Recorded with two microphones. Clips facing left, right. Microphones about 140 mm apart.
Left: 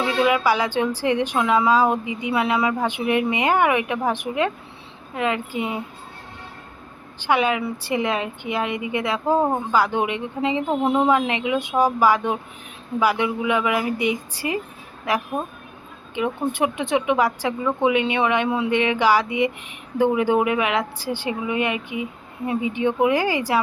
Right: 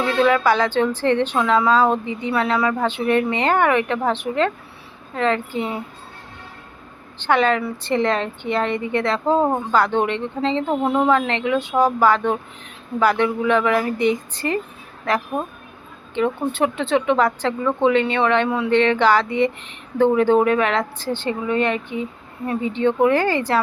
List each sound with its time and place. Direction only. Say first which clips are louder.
0.0 s a woman's voice: right 2 dB; 15° left (ahead or behind)
7.2 s a woman's voice: right 2 dB; 10° left (ahead or behind)
16.1 s a woman's voice: right 3 dB; 15° left (ahead or behind)